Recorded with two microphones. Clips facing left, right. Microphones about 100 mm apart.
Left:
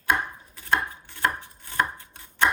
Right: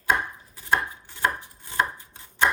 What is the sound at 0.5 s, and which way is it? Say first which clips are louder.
Chopping: right 1 dB; 15° right (ahead or behind).